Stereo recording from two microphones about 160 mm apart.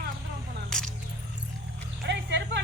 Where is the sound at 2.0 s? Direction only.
90° right.